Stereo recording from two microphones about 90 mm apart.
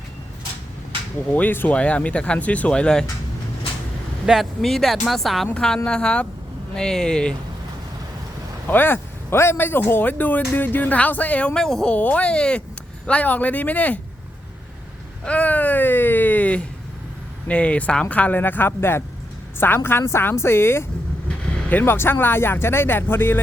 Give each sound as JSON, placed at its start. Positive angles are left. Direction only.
{"t": 1.3, "sound": "speech", "side_deg": 20}
{"t": 4.3, "sound": "speech", "side_deg": 0}
{"t": 8.6, "sound": "speech", "side_deg": 20}
{"t": 11.9, "sound": "speech", "side_deg": 15}
{"t": 15.2, "sound": "speech", "side_deg": 15}
{"t": 21.2, "sound": "speech", "side_deg": 15}